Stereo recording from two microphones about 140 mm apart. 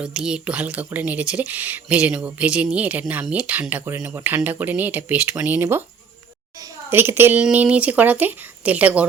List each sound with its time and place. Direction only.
0.0 s speech: 5° right (ahead or behind)
6.6 s a sound: 15° right (ahead or behind)
7.4 s speech: 10° right (ahead or behind)